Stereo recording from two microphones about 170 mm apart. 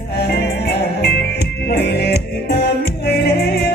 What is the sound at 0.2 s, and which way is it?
Music, 75° left (ahead or behind).